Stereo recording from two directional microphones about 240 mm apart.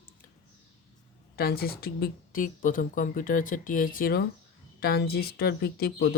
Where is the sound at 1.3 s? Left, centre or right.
Left.